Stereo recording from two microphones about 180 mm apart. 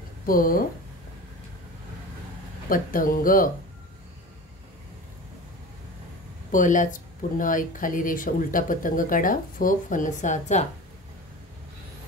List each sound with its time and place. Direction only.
0.3 s speech: 50° left (ahead or behind)
2.7 s speech: 50° left (ahead or behind)
6.5 s speech: 45° left (ahead or behind)